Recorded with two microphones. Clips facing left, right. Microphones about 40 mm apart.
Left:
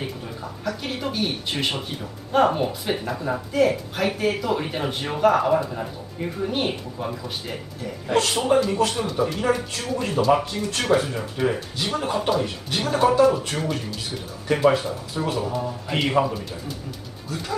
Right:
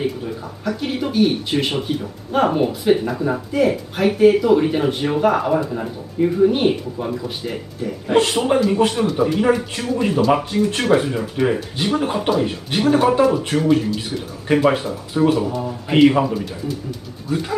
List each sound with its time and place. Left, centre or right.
0.0 s speech: centre
8.1 s speech: right; by 16.7 s centre
17.3 s speech: right